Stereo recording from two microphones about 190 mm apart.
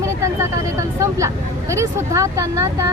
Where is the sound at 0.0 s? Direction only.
15° right (ahead or behind).